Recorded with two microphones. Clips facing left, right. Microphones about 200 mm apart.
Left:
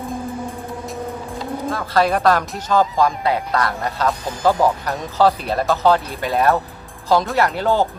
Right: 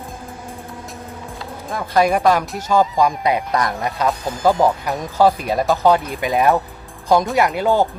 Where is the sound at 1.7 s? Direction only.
15° right (ahead or behind).